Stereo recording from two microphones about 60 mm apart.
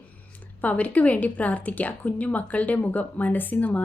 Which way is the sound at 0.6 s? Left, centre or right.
Left.